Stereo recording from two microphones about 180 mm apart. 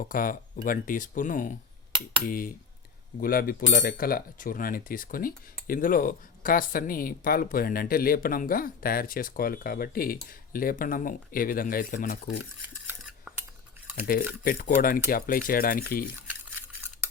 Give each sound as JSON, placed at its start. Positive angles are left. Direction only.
{"t": 0.0, "sound": "speech", "side_deg": 50}
{"t": 12.4, "sound": "cutlery", "side_deg": -10}
{"t": 14.1, "sound": "speech", "side_deg": 55}